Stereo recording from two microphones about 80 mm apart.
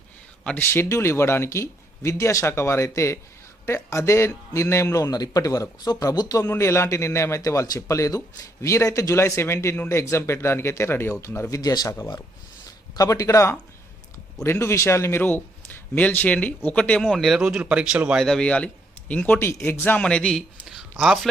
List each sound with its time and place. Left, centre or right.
0.4 s speech: left
6.4 s speech: left
11.5 s speech: left; by 17.1 s centre
17.1 s a man's voice: centre
18.2 s speech: centre
19.4 s speech: left
19.8 s speech: left
20.1 s speech: centre
21.0 s a man's voice: centre